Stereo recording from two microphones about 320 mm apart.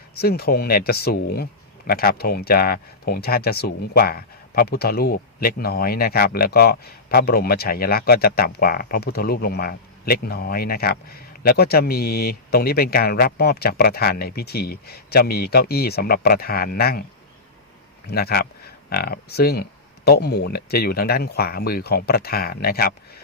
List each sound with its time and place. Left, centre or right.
0.1 s speech: left
18.1 s speech: left